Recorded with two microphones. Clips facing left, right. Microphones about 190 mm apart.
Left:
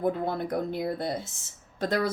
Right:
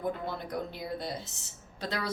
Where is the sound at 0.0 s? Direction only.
50° left (ahead or behind).